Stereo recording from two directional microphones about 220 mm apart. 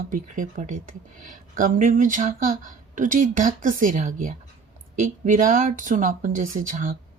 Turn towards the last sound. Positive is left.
turn(degrees=-35)  # may be behind; listen again after turning